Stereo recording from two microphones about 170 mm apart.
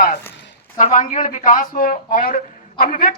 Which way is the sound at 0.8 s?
50° left (ahead or behind).